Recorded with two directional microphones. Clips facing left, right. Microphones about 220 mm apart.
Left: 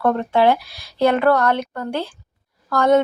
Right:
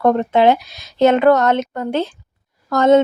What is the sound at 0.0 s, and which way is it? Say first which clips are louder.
Speech: right 3 dB; 20° right (ahead or behind).